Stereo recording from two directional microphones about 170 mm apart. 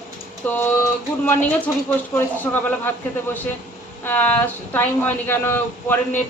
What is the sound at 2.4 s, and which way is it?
Speech, 10° left (ahead or behind).